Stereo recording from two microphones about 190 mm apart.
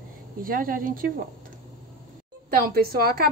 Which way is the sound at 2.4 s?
50° right (ahead or behind).